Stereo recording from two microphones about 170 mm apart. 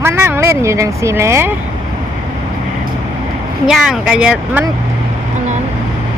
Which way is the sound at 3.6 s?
5° right (ahead or behind).